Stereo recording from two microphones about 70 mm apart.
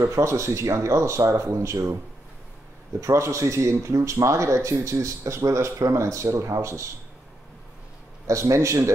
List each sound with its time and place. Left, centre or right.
0.0 s speech: right
3.0 s speech: right
8.3 s speech: right